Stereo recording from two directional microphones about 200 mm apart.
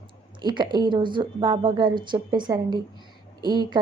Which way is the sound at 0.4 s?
20° right (ahead or behind).